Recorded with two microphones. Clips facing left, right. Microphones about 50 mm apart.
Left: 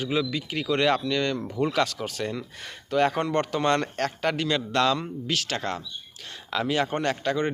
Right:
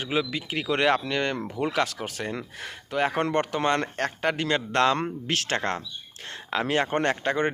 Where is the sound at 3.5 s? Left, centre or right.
Centre.